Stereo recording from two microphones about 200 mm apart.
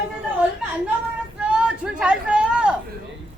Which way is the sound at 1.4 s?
5° right (ahead or behind).